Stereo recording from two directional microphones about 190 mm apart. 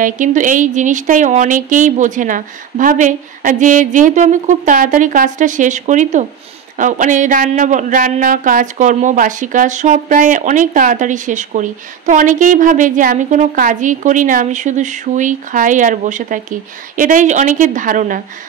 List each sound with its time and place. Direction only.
0.0 s speech: 40° right (ahead or behind)